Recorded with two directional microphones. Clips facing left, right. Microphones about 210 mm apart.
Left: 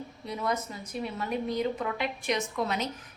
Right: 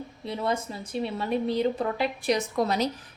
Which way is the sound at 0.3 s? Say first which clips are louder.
Right 3 dB; 30° right (ahead or behind).